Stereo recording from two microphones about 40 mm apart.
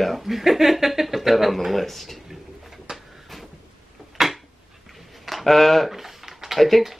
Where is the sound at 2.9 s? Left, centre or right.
Centre.